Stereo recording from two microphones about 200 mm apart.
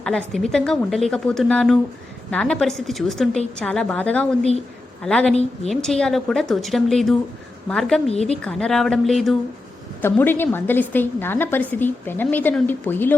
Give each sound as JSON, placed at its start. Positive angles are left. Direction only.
{"t": 0.0, "sound": "a woman's voice", "side_deg": 5}
{"t": 5.3, "sound": "a woman's voice", "side_deg": 30}
{"t": 5.7, "sound": "a woman's voice", "side_deg": 0}